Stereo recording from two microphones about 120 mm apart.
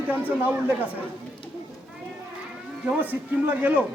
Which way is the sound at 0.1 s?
15° right (ahead or behind).